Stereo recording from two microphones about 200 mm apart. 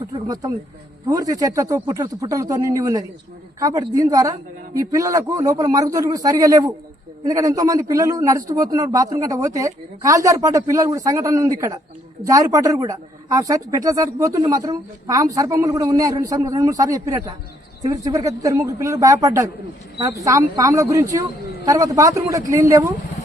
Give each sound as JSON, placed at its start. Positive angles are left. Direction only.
{"t": 0.1, "sound": "speech", "side_deg": -20}